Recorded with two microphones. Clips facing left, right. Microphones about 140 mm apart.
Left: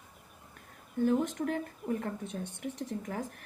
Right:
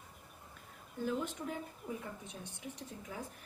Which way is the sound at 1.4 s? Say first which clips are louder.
Left 8 dB; 75° left (ahead or behind).